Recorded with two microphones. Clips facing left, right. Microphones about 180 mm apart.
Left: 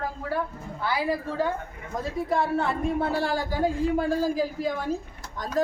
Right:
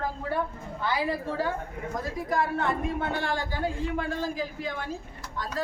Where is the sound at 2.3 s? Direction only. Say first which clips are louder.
Left 1 dB; 30° left (ahead or behind).